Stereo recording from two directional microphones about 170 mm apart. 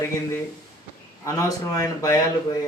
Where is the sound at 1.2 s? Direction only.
20° left (ahead or behind).